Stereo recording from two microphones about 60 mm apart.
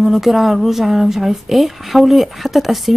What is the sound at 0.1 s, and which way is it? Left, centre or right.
A woman's voice, centre.